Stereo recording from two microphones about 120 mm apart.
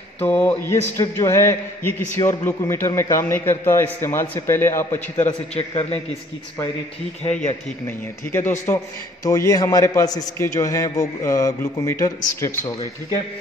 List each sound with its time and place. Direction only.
0.2 s a man's voice: 15° left (ahead or behind)
5.6 s a man's voice: 60° left (ahead or behind)
7.2 s speech: 80° left
8.3 s a man's voice: 20° left (ahead or behind)